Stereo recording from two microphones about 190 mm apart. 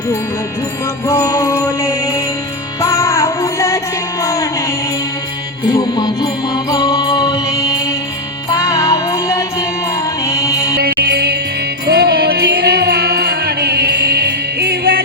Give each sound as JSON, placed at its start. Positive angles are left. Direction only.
{"t": 1.0, "sound": "music", "side_deg": 15}
{"t": 5.6, "sound": "music", "side_deg": 20}
{"t": 10.8, "sound": "music", "side_deg": -55}